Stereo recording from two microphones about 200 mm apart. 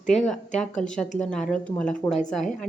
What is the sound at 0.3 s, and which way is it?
Speech, 5° left (ahead or behind).